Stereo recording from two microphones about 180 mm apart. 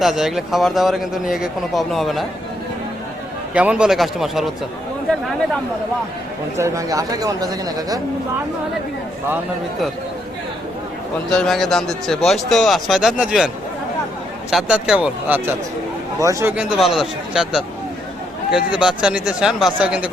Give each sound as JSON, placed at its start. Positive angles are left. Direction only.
{"t": 0.0, "sound": "speech", "side_deg": 0}
{"t": 3.5, "sound": "speech", "side_deg": -5}
{"t": 6.6, "sound": "speech", "side_deg": -15}
{"t": 11.3, "sound": "speech", "side_deg": 0}
{"t": 14.5, "sound": "speech", "side_deg": -5}
{"t": 16.6, "sound": "speech", "side_deg": -5}